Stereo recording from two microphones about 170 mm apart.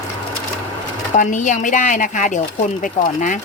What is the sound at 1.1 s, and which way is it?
Speech, 50° left (ahead or behind).